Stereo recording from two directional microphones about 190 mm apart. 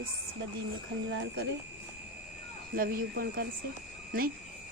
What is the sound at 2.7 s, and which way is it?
Speech, 50° right (ahead or behind).